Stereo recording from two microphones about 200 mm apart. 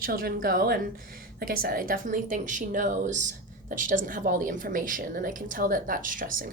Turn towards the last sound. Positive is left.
turn(degrees=-45)  # may be behind; listen again after turning